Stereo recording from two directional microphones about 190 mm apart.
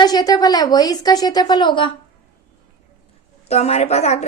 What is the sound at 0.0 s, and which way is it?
A woman's voice, 20° left (ahead or behind).